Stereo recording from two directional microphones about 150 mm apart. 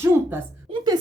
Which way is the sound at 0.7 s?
25° right (ahead or behind).